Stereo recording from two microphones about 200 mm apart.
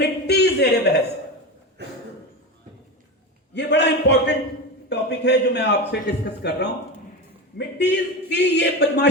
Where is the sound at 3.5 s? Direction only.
60° left (ahead or behind).